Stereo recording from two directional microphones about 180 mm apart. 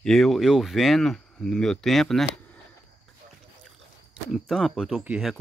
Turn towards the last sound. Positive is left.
turn(degrees=-5)  # may be behind; listen again after turning